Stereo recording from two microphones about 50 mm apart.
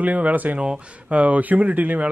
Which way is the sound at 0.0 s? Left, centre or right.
Right.